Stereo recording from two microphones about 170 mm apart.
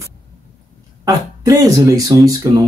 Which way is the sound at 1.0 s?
20° right (ahead or behind).